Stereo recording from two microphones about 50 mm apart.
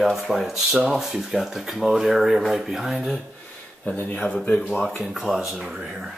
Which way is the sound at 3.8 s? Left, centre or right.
Left.